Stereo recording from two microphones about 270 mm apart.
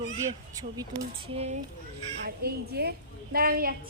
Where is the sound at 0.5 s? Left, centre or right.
Centre.